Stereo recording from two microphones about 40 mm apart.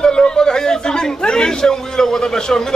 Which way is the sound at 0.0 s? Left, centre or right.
Centre.